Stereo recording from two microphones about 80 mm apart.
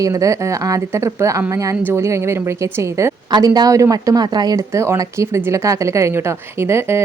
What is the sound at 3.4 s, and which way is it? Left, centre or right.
A woman's voice, right.